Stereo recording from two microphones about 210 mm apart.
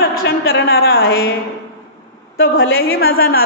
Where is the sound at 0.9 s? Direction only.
75° left (ahead or behind).